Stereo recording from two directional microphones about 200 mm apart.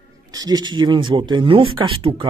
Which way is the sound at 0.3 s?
20° right (ahead or behind).